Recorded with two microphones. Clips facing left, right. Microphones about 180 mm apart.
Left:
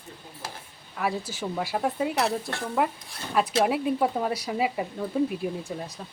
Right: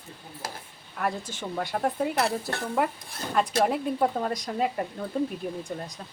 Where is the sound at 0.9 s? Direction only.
5° left (ahead or behind).